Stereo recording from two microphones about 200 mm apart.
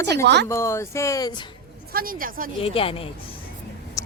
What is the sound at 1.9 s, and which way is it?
Speech, 45° right (ahead or behind).